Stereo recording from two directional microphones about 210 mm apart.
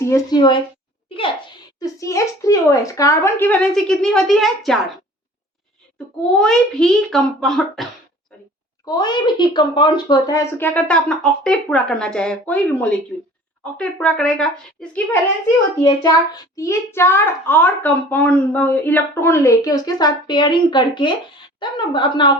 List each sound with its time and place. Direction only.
0.0 s a woman's voice: 15° left (ahead or behind); by 4.8 s centre (ahead or behind)
6.3 s a child's voice: 5° left (ahead or behind)
8.8 s a child's voice: 20° left (ahead or behind); by 15.2 s 5° left (ahead or behind)
15.8 s a child's voice: 20° left (ahead or behind)